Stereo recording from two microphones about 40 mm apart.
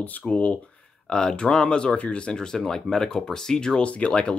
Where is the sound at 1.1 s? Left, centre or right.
Centre.